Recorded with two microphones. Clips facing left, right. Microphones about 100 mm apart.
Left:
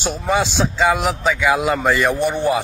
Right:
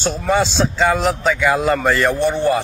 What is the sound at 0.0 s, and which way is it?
A man's voice, 15° left (ahead or behind).